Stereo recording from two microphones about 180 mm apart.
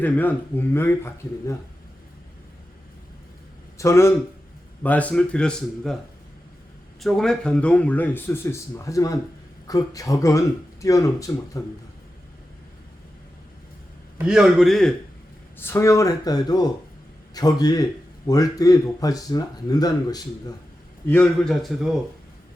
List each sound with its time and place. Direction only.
0.0 s speech: 10° left (ahead or behind)
3.8 s a man's voice: 15° left (ahead or behind)
7.0 s speech: 5° left (ahead or behind)
14.2 s speech: 5° right (ahead or behind)
15.5 s speech: 15° left (ahead or behind)
21.1 s speech: 5° left (ahead or behind)